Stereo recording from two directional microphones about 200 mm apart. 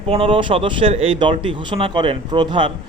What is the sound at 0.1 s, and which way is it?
Speech, 25° right (ahead or behind).